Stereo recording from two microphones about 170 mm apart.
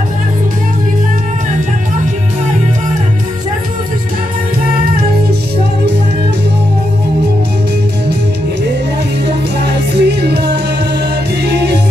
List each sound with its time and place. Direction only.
9.6 s music: 75° right (ahead or behind)